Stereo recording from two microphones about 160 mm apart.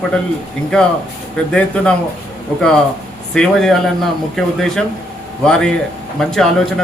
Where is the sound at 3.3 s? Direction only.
5° left (ahead or behind).